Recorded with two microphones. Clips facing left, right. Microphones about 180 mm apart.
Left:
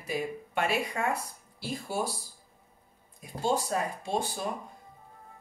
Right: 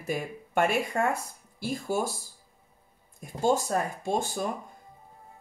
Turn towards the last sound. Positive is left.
turn(degrees=-45)  # may be behind; listen again after turning